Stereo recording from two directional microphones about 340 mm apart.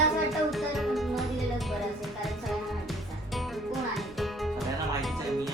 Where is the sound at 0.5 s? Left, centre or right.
Centre.